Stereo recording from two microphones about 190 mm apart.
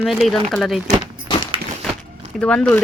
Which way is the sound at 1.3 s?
25° left (ahead or behind).